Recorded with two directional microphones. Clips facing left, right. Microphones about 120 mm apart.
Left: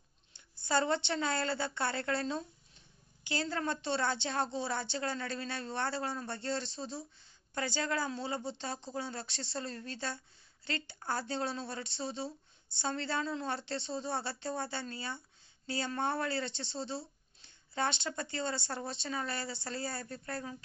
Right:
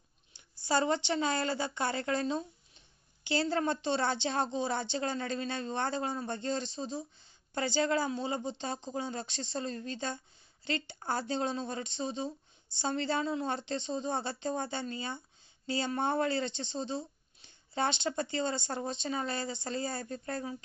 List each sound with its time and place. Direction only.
0.3 s a woman's voice: 15° right (ahead or behind)